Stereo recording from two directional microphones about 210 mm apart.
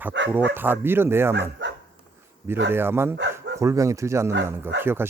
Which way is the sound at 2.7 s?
10° right (ahead or behind).